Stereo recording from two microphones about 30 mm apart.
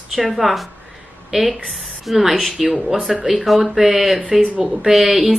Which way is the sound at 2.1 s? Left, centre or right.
Centre.